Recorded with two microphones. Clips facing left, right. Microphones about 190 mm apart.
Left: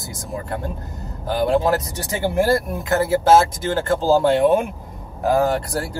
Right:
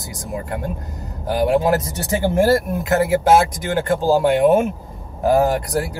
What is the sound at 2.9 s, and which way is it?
Speech, 15° right (ahead or behind).